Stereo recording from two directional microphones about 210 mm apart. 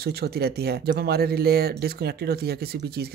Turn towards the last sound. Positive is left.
turn(degrees=-50)  # may be behind; listen again after turning